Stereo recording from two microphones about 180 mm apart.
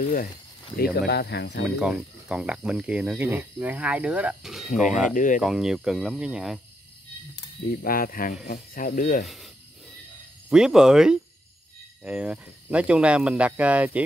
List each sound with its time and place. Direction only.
0.0 s speech: 50° left (ahead or behind); by 1.7 s 70° left (ahead or behind)
1.8 s speech: 5° right (ahead or behind)
5.1 s speech: 45° left (ahead or behind)
5.4 s speech: centre (ahead or behind)
7.3 s speech: 55° left (ahead or behind)
9.2 s speech: centre (ahead or behind)
10.5 s speech: 5° right (ahead or behind)